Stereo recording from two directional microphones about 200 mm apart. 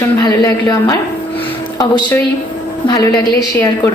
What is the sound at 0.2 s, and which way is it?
Speech, 20° left (ahead or behind).